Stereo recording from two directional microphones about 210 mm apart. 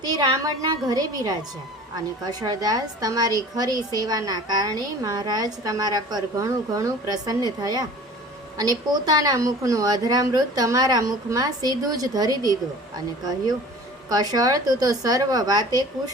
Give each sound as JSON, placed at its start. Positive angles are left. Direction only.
{"t": 0.0, "sound": "a woman's voice", "side_deg": -20}
{"t": 14.1, "sound": "a woman's voice", "side_deg": -20}